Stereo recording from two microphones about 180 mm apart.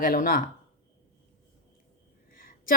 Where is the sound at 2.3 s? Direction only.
50° left (ahead or behind).